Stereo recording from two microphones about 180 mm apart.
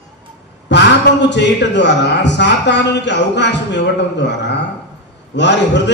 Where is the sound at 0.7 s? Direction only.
75° left (ahead or behind).